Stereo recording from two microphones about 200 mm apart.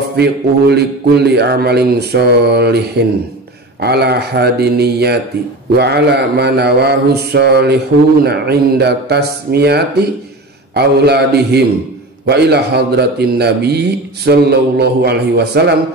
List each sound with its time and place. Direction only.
0.1 s mantra: 55° right (ahead or behind)
3.8 s speech: 55° right (ahead or behind)
5.8 s mantra: 55° right (ahead or behind)